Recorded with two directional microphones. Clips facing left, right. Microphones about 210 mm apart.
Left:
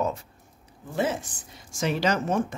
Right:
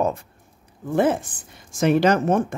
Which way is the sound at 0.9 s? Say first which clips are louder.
Right 7 dB; 55° right (ahead or behind).